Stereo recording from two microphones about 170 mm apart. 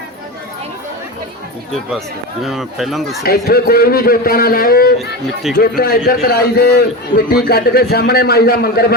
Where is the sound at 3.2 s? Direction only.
65° left (ahead or behind).